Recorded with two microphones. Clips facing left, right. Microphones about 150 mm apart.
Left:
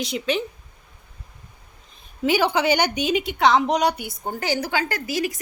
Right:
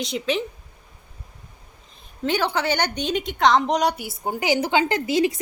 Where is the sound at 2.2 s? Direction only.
10° left (ahead or behind).